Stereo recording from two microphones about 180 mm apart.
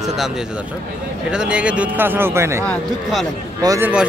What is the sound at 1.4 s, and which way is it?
Speech, 5° right (ahead or behind).